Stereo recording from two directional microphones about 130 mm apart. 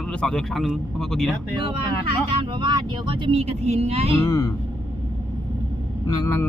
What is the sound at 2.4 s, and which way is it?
Speech, 35° right (ahead or behind).